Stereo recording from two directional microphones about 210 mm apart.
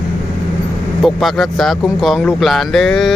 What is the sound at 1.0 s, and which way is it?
Speech, centre (ahead or behind).